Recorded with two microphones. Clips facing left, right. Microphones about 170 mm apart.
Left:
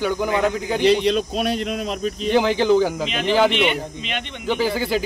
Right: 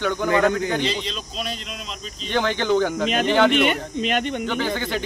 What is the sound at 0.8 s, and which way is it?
Speech, 60° left (ahead or behind).